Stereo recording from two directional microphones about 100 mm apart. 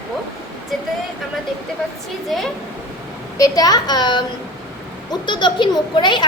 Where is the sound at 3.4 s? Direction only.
40° left (ahead or behind).